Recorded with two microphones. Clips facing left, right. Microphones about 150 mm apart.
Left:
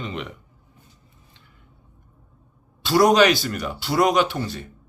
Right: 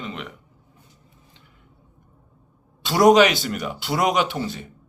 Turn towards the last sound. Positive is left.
turn(degrees=-15)  # may be behind; listen again after turning